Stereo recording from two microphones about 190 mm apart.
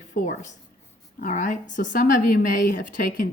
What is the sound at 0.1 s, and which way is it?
A woman's voice, 40° left (ahead or behind).